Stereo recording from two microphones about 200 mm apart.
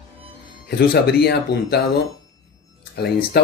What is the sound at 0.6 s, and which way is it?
Speech, 55° left (ahead or behind).